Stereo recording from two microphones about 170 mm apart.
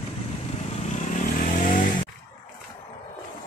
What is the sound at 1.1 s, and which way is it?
Vehicle, 50° left (ahead or behind).